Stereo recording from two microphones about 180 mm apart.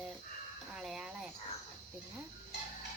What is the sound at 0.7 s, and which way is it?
Speech, centre (ahead or behind).